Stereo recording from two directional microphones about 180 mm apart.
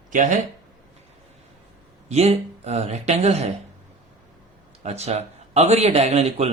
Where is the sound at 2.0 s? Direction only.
35° right (ahead or behind).